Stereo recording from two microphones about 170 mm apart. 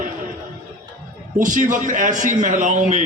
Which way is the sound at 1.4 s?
50° right (ahead or behind).